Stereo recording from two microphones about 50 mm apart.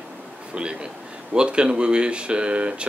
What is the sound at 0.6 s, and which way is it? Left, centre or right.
Speech, centre.